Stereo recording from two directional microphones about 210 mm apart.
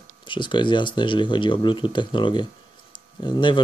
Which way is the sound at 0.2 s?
25° left (ahead or behind).